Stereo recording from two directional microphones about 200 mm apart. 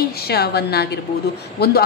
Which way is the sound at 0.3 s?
55° left (ahead or behind).